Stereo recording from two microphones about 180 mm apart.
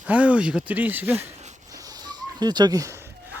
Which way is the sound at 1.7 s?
20° right (ahead or behind).